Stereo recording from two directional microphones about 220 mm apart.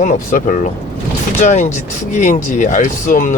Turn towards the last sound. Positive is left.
turn(degrees=35)  # may be behind; listen again after turning